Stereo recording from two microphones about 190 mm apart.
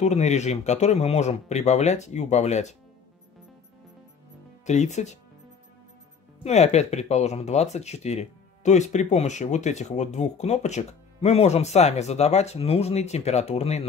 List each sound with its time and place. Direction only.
0.0 s speech: 35° left (ahead or behind)
4.6 s speech: 40° left (ahead or behind)
6.4 s speech: 35° left (ahead or behind)